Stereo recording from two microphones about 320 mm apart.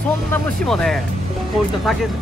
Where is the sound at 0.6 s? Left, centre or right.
Centre.